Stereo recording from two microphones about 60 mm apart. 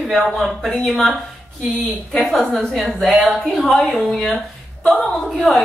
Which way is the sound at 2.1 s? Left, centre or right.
Centre.